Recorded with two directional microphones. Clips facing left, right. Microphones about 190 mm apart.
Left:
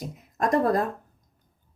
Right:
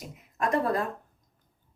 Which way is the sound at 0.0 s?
40° left (ahead or behind).